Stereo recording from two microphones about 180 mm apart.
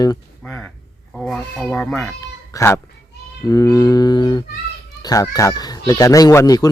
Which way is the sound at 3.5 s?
20° left (ahead or behind).